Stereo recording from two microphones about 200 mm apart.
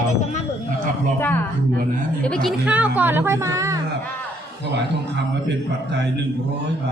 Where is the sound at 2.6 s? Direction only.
5° right (ahead or behind).